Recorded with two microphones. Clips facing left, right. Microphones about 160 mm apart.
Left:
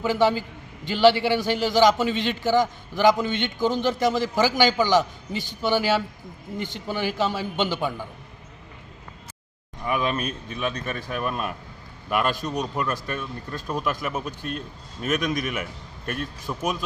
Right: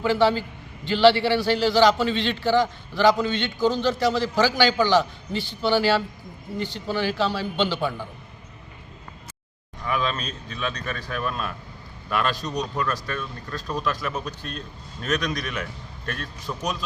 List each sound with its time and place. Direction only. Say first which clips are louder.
0.0 s a man's voice: right 1 dB; 15° left (ahead or behind)
9.8 s a man's voice: left 2 dB; 15° left (ahead or behind)